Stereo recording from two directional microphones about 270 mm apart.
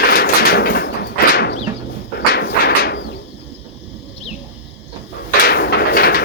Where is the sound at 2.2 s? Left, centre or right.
Left.